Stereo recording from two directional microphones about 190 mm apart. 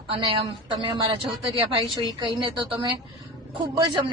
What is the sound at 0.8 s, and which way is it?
Speech, 25° right (ahead or behind).